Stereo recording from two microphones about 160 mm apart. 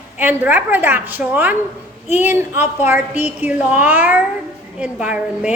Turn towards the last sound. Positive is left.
turn(degrees=-5)  # may be behind; listen again after turning